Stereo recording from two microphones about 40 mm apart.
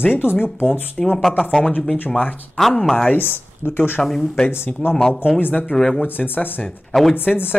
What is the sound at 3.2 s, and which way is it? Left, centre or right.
Speech, left.